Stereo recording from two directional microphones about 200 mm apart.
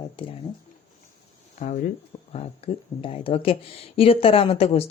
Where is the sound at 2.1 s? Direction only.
20° left (ahead or behind).